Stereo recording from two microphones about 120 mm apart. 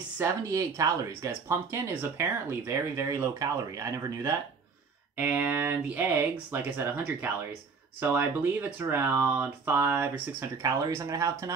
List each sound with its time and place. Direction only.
0.2 s speech: 30° right (ahead or behind)
5.1 s speech: 15° right (ahead or behind)